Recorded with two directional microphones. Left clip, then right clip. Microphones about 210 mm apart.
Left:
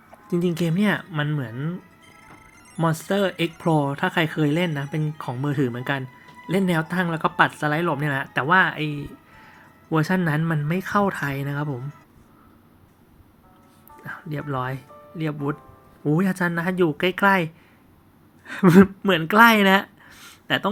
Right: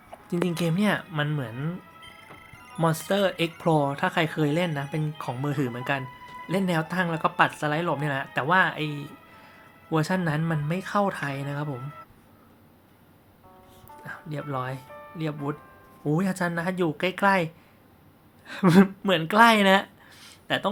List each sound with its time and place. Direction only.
0.3 s speech: 5° left (ahead or behind)
8.9 s speech: 35° right (ahead or behind)
9.9 s speech: 10° left (ahead or behind)
14.0 s a woman's voice: 10° left (ahead or behind)